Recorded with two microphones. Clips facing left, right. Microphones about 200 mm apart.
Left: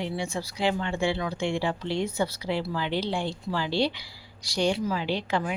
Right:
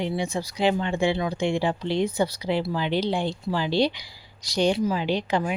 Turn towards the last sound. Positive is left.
turn(degrees=-20)  # may be behind; listen again after turning